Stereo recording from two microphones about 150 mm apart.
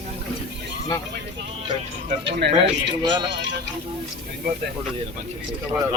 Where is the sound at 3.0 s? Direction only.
30° right (ahead or behind).